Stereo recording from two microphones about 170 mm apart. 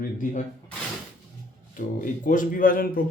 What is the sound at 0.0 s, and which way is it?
Speech, 50° left (ahead or behind).